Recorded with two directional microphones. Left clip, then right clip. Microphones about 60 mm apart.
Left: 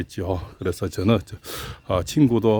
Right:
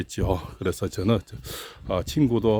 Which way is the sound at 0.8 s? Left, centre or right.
Left.